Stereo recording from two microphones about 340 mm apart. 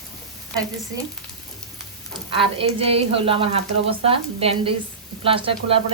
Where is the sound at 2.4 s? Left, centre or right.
Centre.